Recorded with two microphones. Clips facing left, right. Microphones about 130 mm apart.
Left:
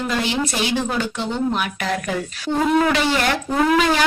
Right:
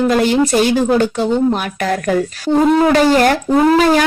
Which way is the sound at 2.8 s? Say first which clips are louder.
Right 8 dB; 40° right (ahead or behind).